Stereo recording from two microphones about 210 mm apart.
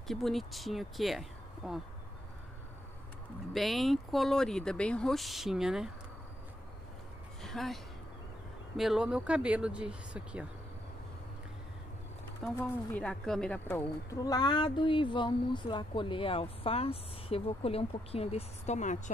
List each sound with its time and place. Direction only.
0.1 s speech: centre (ahead or behind)
3.5 s speech: centre (ahead or behind)
7.4 s speech: centre (ahead or behind)
12.5 s a woman's voice: 5° left (ahead or behind); by 18.9 s 35° left (ahead or behind)